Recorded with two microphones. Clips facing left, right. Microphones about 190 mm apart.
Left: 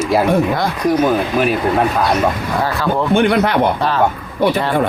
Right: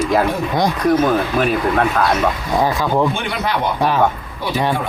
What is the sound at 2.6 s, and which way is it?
Speech, 15° right (ahead or behind).